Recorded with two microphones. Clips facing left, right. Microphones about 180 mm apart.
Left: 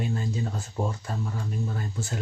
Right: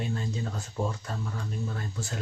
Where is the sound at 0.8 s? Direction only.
20° left (ahead or behind).